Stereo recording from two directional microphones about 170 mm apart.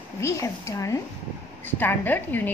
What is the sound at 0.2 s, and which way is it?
A woman's voice, 15° left (ahead or behind).